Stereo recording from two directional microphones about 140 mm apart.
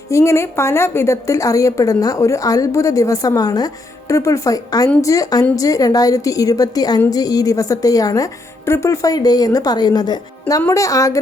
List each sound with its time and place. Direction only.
0.1 s a woman's voice: 20° left (ahead or behind)